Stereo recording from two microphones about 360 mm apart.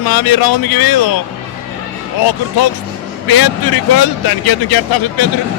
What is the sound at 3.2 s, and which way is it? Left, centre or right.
Speech, left.